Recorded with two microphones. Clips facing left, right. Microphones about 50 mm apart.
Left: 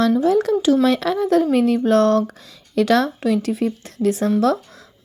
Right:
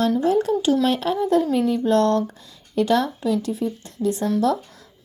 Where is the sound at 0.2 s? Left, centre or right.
Left.